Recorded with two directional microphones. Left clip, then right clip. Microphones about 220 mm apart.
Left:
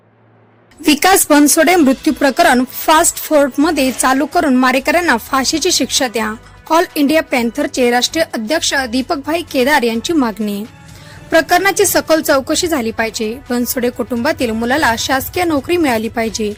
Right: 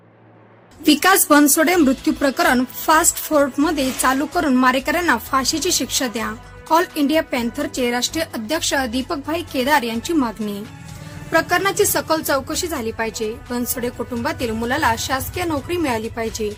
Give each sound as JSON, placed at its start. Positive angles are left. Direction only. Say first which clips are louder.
{"t": 0.9, "sound": "a woman's voice", "louder": "left 4 dB", "side_deg": 25}